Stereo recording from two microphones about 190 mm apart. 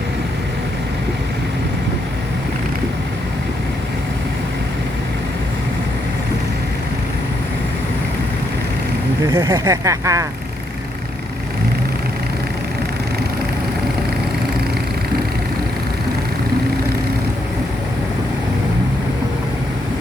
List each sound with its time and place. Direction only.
9.3 s speech: 15° right (ahead or behind)